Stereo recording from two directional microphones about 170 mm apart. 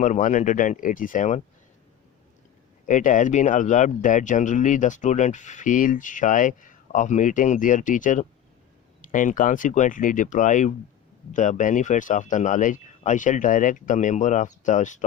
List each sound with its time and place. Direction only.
0.0 s speech: 45° left (ahead or behind)
2.8 s speech: 50° left (ahead or behind)